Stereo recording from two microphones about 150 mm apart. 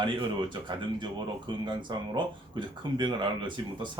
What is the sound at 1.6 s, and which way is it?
Speech, 30° right (ahead or behind).